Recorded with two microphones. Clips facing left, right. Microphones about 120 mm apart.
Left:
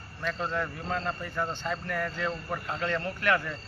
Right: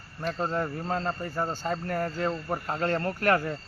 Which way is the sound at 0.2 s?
40° right (ahead or behind).